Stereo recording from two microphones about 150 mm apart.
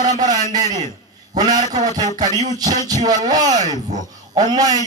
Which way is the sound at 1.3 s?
25° right (ahead or behind).